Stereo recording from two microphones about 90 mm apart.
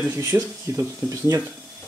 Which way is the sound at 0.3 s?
30° right (ahead or behind).